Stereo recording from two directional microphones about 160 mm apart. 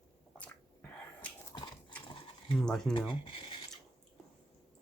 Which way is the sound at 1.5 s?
30° left (ahead or behind).